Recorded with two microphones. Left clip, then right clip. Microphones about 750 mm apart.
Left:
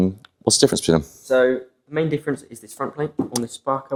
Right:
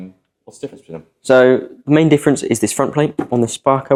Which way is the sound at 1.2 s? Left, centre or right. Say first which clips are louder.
Right 9 dB; right.